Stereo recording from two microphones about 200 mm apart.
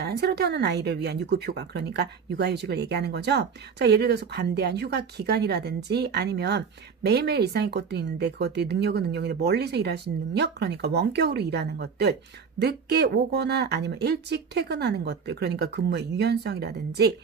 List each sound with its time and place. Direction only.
0.0 s speech: 55° right (ahead or behind)